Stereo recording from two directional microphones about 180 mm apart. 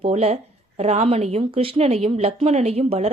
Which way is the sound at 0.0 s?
35° right (ahead or behind).